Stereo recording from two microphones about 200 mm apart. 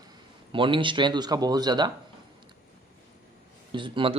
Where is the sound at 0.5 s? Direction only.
25° right (ahead or behind).